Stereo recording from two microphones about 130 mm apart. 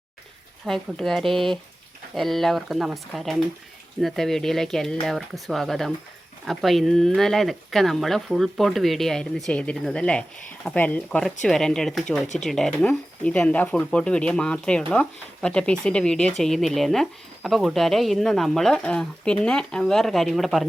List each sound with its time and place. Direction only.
0.6 s speech: centre (ahead or behind)